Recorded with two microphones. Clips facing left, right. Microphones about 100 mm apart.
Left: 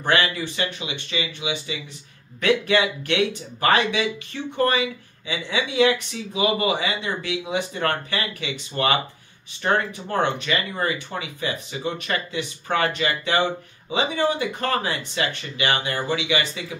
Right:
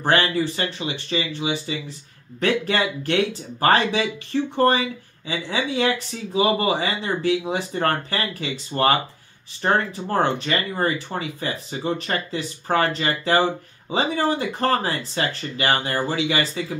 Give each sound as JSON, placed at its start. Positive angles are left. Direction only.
{"t": 0.0, "sound": "speech", "side_deg": -35}